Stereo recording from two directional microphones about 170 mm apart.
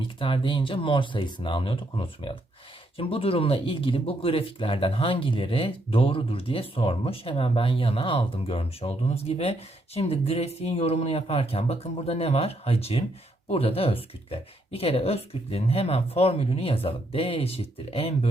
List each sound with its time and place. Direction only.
0.2 s speech: 30° left (ahead or behind)